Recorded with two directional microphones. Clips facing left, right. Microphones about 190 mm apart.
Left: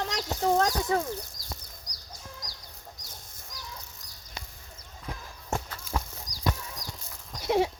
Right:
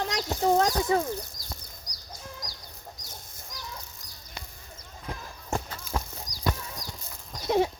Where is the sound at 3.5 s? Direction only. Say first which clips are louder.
Right 3 dB; 90° right.